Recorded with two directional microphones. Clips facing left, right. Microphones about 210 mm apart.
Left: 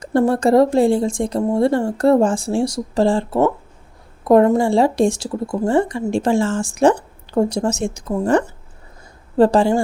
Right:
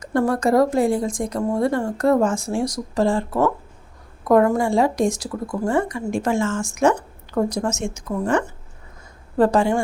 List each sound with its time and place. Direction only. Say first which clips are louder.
0.0 s a woman's voice: left 4 dB; 30° left (ahead or behind)